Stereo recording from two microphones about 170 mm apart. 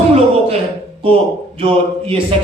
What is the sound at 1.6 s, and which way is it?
Speech, 35° right (ahead or behind).